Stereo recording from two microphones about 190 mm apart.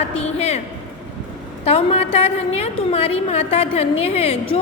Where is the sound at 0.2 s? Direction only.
35° left (ahead or behind).